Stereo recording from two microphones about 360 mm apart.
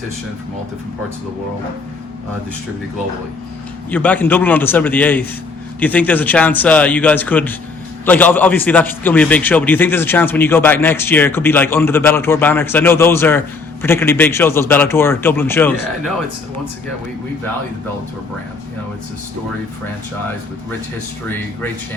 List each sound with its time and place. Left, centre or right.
3.8 s a man's voice: centre
21.2 s a man's voice: centre